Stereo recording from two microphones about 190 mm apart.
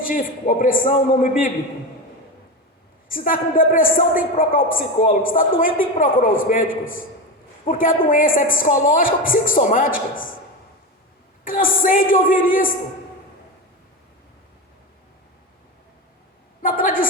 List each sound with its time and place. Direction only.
0.0 s a man's voice: 45° left (ahead or behind)
3.1 s a man's voice: 45° left (ahead or behind)
11.4 s a man's voice: 45° left (ahead or behind)
16.6 s a sound: 45° left (ahead or behind)